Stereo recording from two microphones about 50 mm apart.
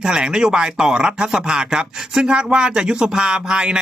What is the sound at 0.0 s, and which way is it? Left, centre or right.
Speech, centre.